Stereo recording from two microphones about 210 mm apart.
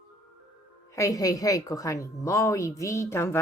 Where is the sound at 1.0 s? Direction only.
15° left (ahead or behind).